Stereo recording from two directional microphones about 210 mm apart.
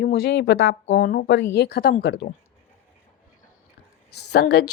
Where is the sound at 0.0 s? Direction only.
50° left (ahead or behind).